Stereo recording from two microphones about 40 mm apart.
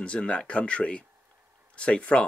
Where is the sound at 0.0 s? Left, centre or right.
Left.